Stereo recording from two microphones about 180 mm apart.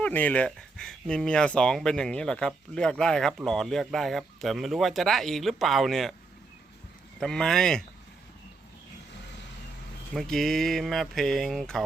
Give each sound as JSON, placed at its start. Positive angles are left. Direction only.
{"t": 0.0, "sound": "speech", "side_deg": 10}
{"t": 7.2, "sound": "speech", "side_deg": 5}
{"t": 10.2, "sound": "speech", "side_deg": 0}